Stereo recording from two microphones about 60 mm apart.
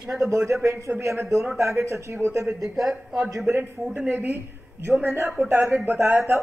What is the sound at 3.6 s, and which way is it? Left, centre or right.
Speech, right.